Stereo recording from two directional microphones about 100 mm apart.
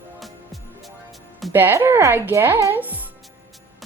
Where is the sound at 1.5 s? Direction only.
20° right (ahead or behind).